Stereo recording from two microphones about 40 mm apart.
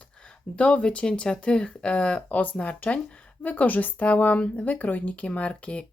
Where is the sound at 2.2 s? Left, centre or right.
Left.